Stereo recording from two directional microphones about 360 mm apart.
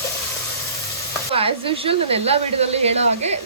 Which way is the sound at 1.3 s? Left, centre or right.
Centre.